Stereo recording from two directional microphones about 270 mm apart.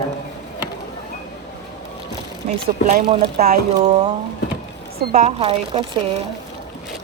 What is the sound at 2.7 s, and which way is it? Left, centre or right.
Speech, right.